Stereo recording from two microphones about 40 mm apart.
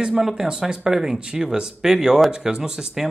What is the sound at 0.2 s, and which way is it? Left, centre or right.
Speech, centre.